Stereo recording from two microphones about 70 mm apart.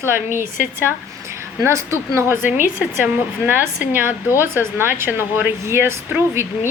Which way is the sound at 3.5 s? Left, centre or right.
Right.